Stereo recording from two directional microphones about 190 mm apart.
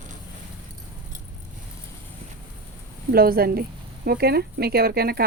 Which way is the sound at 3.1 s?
50° right (ahead or behind).